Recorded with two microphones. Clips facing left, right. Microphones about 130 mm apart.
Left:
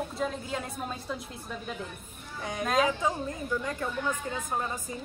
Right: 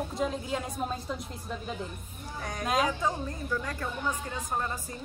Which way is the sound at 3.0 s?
20° left (ahead or behind).